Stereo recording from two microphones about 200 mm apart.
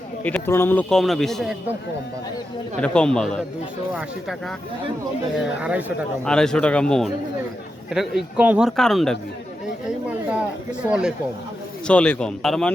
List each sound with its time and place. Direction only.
0.3 s a man's voice: 10° left (ahead or behind)
2.8 s a man's voice: 5° left (ahead or behind)
10.8 s a man's voice: 5° right (ahead or behind)
11.9 s a man's voice: 5° left (ahead or behind)